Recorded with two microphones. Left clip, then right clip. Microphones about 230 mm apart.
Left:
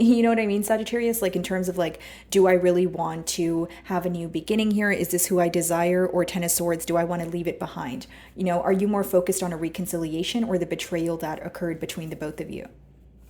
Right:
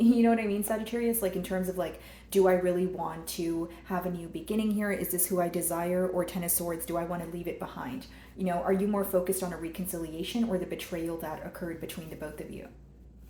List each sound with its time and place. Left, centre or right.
0.0 s speech: left